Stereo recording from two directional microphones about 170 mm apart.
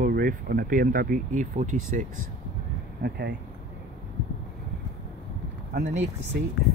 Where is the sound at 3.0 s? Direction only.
70° right (ahead or behind).